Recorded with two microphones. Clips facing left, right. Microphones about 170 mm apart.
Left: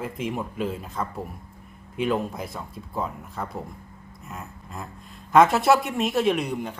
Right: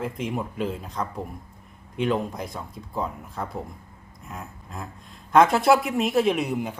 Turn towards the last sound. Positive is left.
turn(degrees=-5)  # may be behind; listen again after turning